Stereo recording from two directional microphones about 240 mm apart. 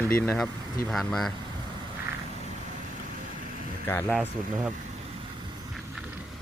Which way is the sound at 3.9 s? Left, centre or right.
Centre.